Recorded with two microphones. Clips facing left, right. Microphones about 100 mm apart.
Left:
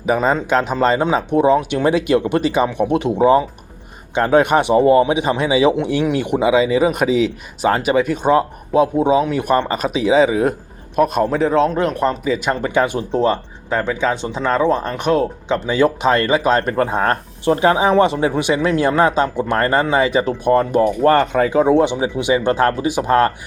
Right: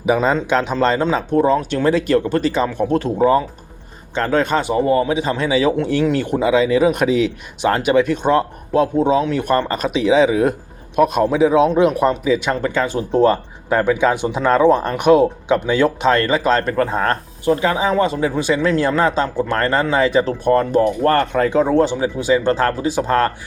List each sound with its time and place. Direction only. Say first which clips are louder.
0.0 s speech: even; centre (ahead or behind)
12.7 s speech: left 3 dB; 15° left (ahead or behind)
13.1 s speech: right 3 dB; centre (ahead or behind)
17.4 s speech: left 3 dB; 25° left (ahead or behind); by 21.7 s 5° left (ahead or behind)
21.7 s speech: left 1 dB; 15° left (ahead or behind)